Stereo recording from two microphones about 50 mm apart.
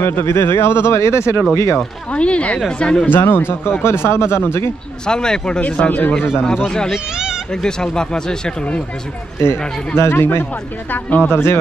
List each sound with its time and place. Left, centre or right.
0.0 s speech: left
2.1 s speech: left
3.1 s speech: left
5.0 s speech: centre
7.6 s speech: centre
9.4 s speech: left
10.9 s speech: left
11.2 s speech: left